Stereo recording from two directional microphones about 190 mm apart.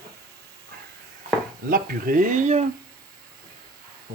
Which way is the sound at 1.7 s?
50° right (ahead or behind).